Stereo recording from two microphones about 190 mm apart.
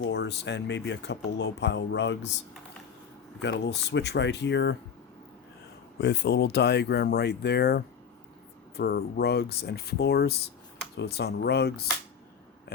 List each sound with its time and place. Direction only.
0.0 s speech: 65° left (ahead or behind)
3.4 s speech: 65° left (ahead or behind)
6.0 s speech: 60° left (ahead or behind)